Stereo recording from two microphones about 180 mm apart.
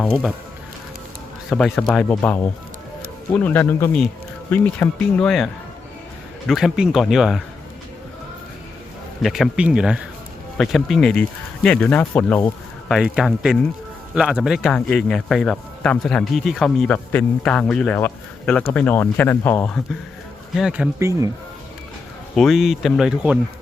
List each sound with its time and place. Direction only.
1.5 s speech: centre (ahead or behind)
6.5 s speech: 5° right (ahead or behind)
9.2 s speech: centre (ahead or behind)
21.0 s speech: 15° right (ahead or behind)
22.4 s speech: centre (ahead or behind)